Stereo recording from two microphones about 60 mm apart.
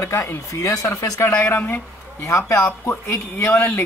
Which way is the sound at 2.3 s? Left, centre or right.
Left.